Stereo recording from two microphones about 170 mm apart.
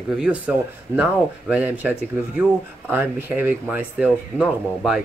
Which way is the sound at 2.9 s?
10° right (ahead or behind).